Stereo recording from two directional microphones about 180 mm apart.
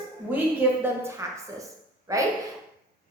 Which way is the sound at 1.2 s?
15° right (ahead or behind).